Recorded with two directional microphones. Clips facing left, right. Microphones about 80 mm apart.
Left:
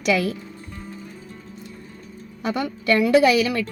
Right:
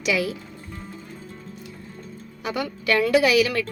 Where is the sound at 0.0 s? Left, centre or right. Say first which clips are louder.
Left 3 dB; left.